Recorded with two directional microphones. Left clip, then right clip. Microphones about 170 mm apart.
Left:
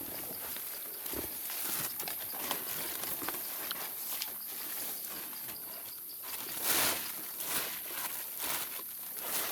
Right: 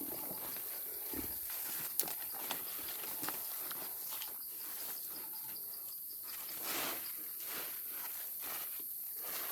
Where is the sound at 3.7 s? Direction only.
Centre (ahead or behind).